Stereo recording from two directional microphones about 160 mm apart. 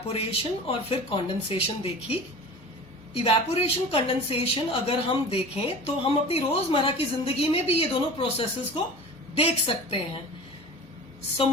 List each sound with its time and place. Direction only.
0.1 s a woman's voice: 40° left (ahead or behind)
3.2 s a woman's voice: 40° left (ahead or behind)